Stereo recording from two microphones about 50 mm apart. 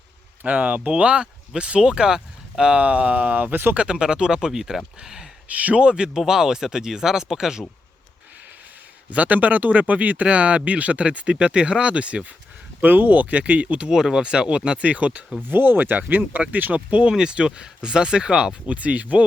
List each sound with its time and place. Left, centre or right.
0.4 s speech: right
3.5 s speech: right
3.8 s speech: centre
5.5 s speech: right
6.1 s speech: centre
9.0 s speech: right
12.8 s speech: right
13.9 s speech: centre; by 15.2 s right
15.4 s speech: right
17.1 s speech: centre
18.8 s speech: right